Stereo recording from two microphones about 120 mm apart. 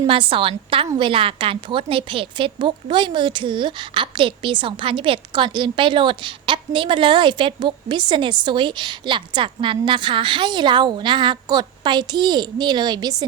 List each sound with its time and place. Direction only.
0.1 s a woman's voice: 45° right (ahead or behind)